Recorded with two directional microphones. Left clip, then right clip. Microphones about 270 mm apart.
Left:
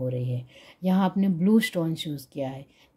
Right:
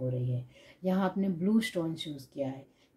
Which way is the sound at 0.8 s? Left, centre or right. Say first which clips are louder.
Left 5 dB; left.